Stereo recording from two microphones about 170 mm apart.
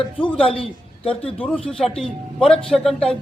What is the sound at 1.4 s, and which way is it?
A man's voice, 10° left (ahead or behind).